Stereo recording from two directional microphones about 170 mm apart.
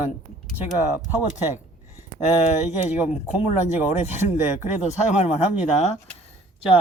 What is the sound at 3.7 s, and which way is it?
Speech, 10° right (ahead or behind).